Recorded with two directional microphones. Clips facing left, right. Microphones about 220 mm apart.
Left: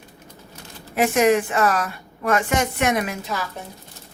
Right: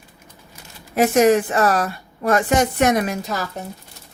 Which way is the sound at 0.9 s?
40° right (ahead or behind).